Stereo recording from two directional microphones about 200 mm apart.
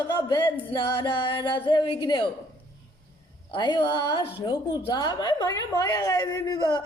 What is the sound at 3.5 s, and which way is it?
A woman's voice, 25° left (ahead or behind).